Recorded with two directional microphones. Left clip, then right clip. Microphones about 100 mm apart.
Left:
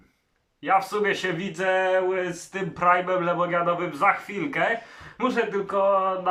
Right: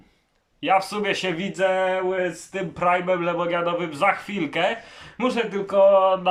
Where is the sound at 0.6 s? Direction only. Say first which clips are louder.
Right 1 dB; 20° right (ahead or behind).